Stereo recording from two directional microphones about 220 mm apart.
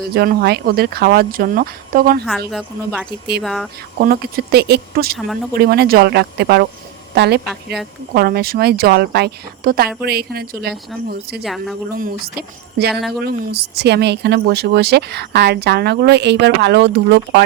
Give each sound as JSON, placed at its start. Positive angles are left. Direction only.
{"t": 0.1, "sound": "speech", "side_deg": -45}
{"t": 2.5, "sound": "a woman's voice", "side_deg": 5}
{"t": 4.0, "sound": "speech", "side_deg": -45}
{"t": 11.4, "sound": "a woman's voice", "side_deg": 0}
{"t": 11.9, "sound": "speech", "side_deg": -40}
{"t": 12.9, "sound": "a woman's voice", "side_deg": 0}
{"t": 13.2, "sound": "speech", "side_deg": -45}